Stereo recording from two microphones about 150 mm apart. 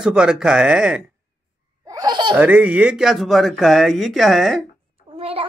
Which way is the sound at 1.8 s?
25° right (ahead or behind).